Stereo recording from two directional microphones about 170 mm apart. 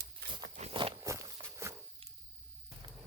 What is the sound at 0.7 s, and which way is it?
Walk, 30° right (ahead or behind).